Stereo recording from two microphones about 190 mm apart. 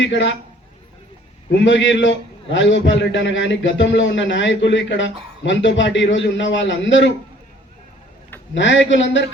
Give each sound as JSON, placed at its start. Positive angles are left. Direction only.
{"t": 0.0, "sound": "a man's voice", "side_deg": 75}
{"t": 1.5, "sound": "a man's voice", "side_deg": 75}
{"t": 8.5, "sound": "a man's voice", "side_deg": 75}